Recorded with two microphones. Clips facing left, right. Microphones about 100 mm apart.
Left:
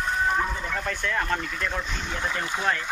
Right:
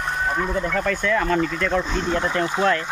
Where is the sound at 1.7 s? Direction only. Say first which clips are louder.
Right 9 dB; 60° right (ahead or behind).